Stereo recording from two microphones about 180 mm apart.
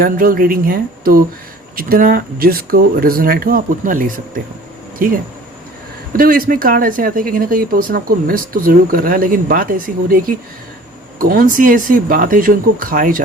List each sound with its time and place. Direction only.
0.0 s speech: 55° right (ahead or behind)